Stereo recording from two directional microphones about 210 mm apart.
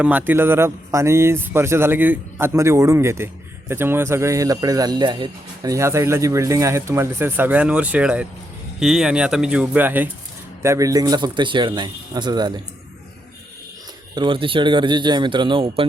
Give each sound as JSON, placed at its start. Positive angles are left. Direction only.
{"t": 0.0, "sound": "a man's voice", "side_deg": -10}
{"t": 14.2, "sound": "a man's voice", "side_deg": -25}